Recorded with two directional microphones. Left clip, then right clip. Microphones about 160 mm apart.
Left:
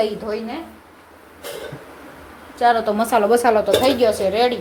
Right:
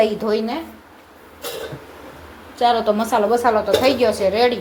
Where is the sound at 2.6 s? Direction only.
Centre (ahead or behind); by 3.6 s 20° left (ahead or behind).